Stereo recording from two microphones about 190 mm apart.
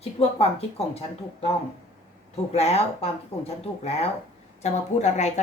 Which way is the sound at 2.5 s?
35° left (ahead or behind).